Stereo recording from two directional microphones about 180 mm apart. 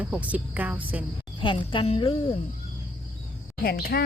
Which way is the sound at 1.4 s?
25° left (ahead or behind).